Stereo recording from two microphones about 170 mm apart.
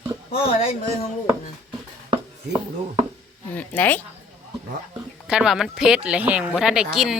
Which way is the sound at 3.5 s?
10° left (ahead or behind).